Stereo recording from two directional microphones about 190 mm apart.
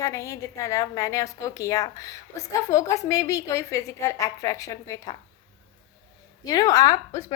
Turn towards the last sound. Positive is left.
turn(degrees=20)  # may be behind; listen again after turning